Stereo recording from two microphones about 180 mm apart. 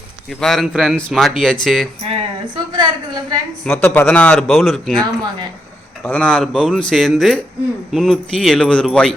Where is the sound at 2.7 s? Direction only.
25° right (ahead or behind).